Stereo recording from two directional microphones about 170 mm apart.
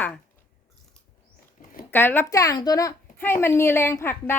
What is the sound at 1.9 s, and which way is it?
A woman's voice, 10° left (ahead or behind).